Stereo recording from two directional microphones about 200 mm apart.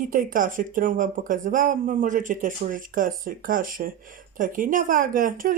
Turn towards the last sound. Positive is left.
turn(degrees=-40)  # may be behind; listen again after turning